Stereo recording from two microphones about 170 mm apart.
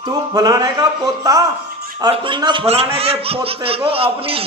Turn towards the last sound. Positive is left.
turn(degrees=-35)  # may be behind; listen again after turning